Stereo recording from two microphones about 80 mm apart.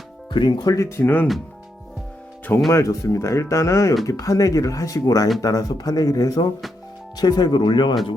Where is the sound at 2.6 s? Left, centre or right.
Left.